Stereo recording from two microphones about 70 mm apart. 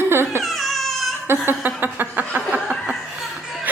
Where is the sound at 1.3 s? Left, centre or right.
Right.